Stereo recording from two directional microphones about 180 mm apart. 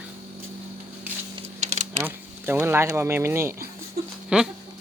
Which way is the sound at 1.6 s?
40° right (ahead or behind).